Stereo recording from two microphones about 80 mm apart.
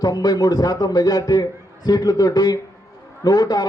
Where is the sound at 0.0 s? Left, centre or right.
Left.